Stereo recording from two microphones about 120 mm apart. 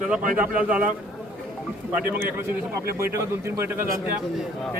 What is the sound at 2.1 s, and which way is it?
Speech, 20° right (ahead or behind).